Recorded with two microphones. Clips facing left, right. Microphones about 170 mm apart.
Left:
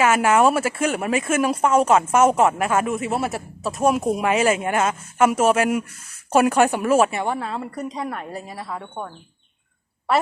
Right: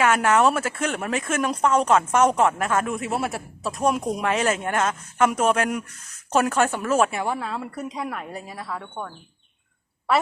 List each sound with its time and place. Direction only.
0.0 s speech: 5° left (ahead or behind)
8.4 s a woman's voice: 35° left (ahead or behind)
8.6 s speech: 15° left (ahead or behind)